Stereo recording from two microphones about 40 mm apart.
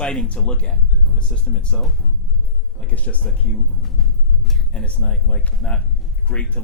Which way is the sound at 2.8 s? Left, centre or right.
Left.